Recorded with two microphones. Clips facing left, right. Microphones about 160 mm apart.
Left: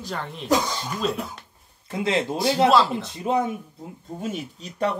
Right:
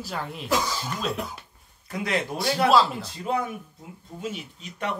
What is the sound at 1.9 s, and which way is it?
Speech, 25° left (ahead or behind).